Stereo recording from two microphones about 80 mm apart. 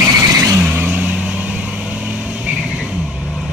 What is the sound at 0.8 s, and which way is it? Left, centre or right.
Vehicle, right.